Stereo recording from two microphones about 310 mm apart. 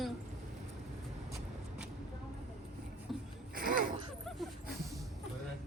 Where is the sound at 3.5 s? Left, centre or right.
Right.